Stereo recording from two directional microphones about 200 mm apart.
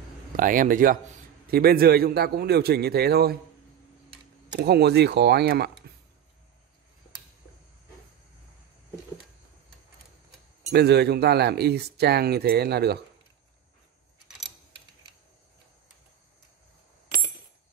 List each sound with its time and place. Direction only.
0.4 s speech: 40° right (ahead or behind)
4.5 s speech: 55° right (ahead or behind)
10.7 s speech: 55° right (ahead or behind)